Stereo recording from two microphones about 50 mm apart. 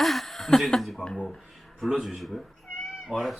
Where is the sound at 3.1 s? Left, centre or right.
Centre.